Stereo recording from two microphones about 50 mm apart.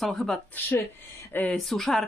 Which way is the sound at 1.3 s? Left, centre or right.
Left.